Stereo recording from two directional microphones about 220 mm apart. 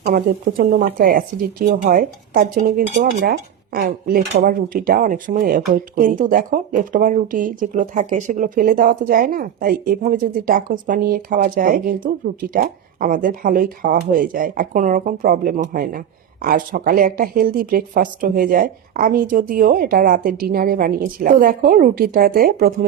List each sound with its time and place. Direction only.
0.0 s speech: 40° right (ahead or behind)